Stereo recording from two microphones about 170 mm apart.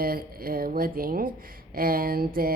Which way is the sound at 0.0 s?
60° right (ahead or behind).